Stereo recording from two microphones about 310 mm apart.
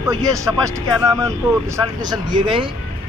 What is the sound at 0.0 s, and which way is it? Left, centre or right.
Speech, centre.